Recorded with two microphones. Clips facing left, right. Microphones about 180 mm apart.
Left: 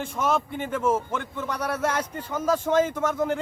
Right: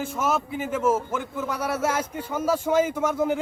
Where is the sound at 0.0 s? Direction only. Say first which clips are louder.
Even; 5° right (ahead or behind).